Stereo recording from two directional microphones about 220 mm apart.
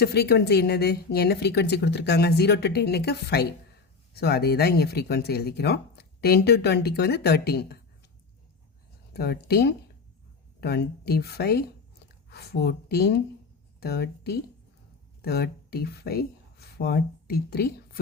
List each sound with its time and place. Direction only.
0.0 s speech: 45° left (ahead or behind)
9.1 s speech: 45° left (ahead or behind)